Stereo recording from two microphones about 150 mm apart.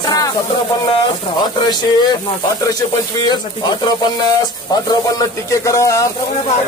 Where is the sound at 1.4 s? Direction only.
30° left (ahead or behind).